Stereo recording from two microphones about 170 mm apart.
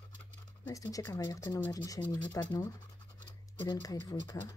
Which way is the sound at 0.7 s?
20° left (ahead or behind).